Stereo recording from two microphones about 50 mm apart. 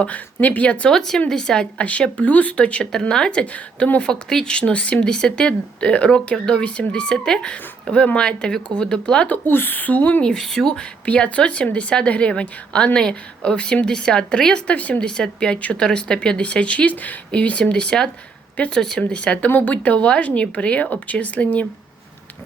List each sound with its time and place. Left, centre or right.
0.3 s a woman's voice: left
0.9 s speech: centre
1.8 s a woman's voice: left
2.9 s speech: centre
3.4 s a woman's voice: left
4.1 s a woman's voice: centre
9.5 s a woman's voice: left
10.2 s speech: centre
11.0 s a woman's voice: left
15.1 s a woman's voice: centre
19.5 s a woman's voice: left
19.7 s a woman's voice: left